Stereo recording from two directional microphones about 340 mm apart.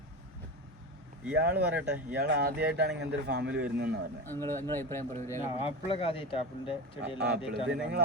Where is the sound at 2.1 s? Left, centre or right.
Right.